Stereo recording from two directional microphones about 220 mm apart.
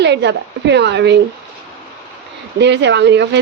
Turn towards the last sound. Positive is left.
turn(degrees=-50)  # may be behind; listen again after turning